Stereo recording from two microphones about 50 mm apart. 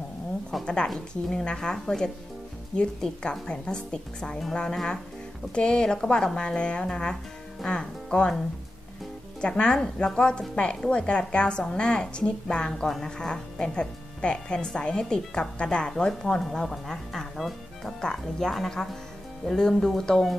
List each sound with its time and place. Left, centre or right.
0.8 s speech: centre
9.4 s a woman's voice: centre